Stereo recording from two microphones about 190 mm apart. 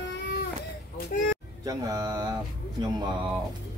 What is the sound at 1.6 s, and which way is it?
Speech, 20° right (ahead or behind).